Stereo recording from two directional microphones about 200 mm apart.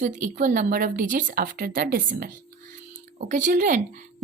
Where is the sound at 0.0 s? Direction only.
40° right (ahead or behind).